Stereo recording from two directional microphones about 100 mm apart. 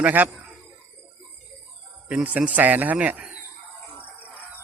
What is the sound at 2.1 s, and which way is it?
Speech, 15° right (ahead or behind).